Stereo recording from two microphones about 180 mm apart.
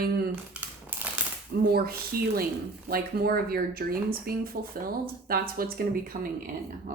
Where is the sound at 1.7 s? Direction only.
60° right (ahead or behind).